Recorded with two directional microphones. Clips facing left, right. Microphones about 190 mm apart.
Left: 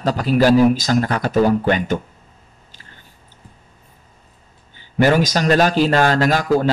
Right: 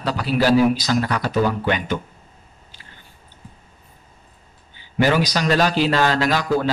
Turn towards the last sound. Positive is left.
turn(degrees=45)  # may be behind; listen again after turning